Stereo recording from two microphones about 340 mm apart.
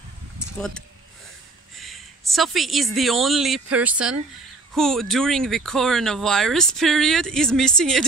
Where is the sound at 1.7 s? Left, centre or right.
Centre.